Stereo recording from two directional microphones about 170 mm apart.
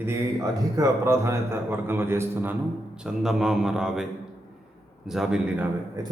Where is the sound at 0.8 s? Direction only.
15° right (ahead or behind).